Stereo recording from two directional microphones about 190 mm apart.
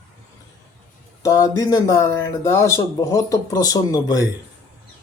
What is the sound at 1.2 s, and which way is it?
Speech, 20° left (ahead or behind).